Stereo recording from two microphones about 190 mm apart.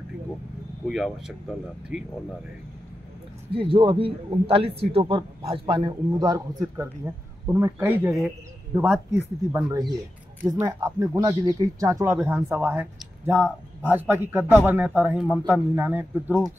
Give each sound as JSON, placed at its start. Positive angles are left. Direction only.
{"t": 0.8, "sound": "speech", "side_deg": 0}
{"t": 3.5, "sound": "a man's voice", "side_deg": -25}